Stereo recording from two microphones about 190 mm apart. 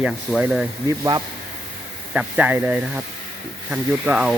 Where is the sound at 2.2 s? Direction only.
10° right (ahead or behind).